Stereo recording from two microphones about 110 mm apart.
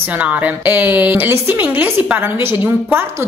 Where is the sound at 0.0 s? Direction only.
15° right (ahead or behind).